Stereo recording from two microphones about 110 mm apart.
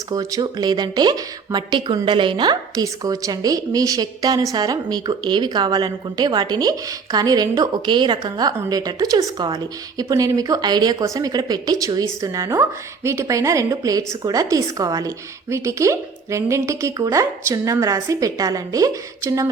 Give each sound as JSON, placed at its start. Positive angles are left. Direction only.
{"t": 0.1, "sound": "a woman's voice", "side_deg": -35}